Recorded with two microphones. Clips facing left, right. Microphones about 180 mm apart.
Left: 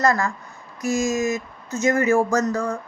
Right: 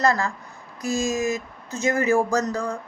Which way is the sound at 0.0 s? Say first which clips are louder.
Left 1 dB; 30° right (ahead or behind).